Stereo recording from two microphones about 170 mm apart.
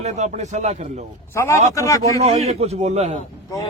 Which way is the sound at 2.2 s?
40° right (ahead or behind).